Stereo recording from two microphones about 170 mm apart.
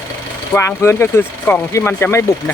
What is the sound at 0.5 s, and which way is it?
Speech, 15° left (ahead or behind).